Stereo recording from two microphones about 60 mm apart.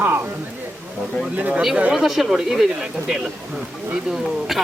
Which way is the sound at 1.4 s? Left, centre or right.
Right.